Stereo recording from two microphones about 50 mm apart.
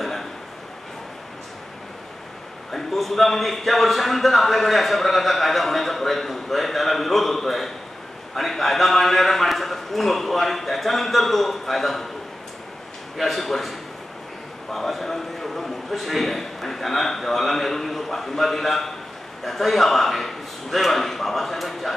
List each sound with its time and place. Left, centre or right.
2.7 s a man's voice: centre
13.2 s a man's voice: centre